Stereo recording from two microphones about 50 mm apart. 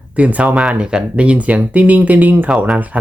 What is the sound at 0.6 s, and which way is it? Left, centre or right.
Speech, centre.